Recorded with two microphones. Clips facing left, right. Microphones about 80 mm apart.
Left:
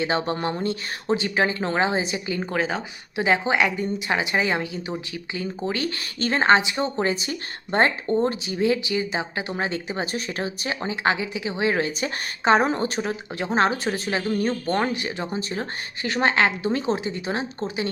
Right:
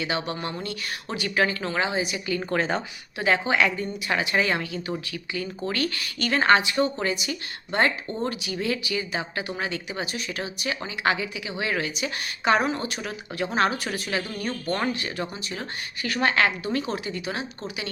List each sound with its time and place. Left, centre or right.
0.0 s speech: left
2.5 s speech: centre
3.2 s speech: left
15.4 s speech: left
16.0 s speech: left